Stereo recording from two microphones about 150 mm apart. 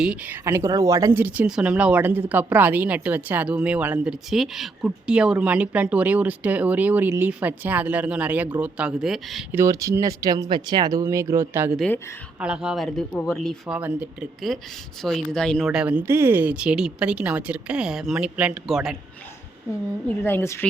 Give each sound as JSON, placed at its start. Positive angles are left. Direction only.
{"t": 0.0, "sound": "speech", "side_deg": -5}
{"t": 0.4, "sound": "speech", "side_deg": -20}
{"t": 9.5, "sound": "speech", "side_deg": -20}
{"t": 12.4, "sound": "speech", "side_deg": -5}
{"t": 13.7, "sound": "speech", "side_deg": -10}
{"t": 14.5, "sound": "speech", "side_deg": 0}
{"t": 20.2, "sound": "a woman's voice", "side_deg": 15}